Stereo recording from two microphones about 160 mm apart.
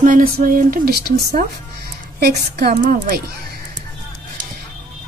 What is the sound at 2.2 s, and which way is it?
A woman's voice, 75° right (ahead or behind).